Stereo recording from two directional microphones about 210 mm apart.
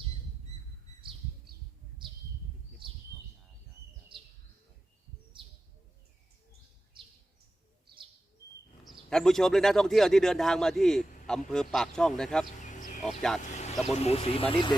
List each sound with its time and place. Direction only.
2.0 s bird: 25° right (ahead or behind)
2.8 s a sound: 25° right (ahead or behind)
8.8 s a man's voice: centre (ahead or behind)
12.5 s a sound: 35° left (ahead or behind)
13.4 s vehicle: 35° left (ahead or behind)
13.8 s speech: 30° left (ahead or behind)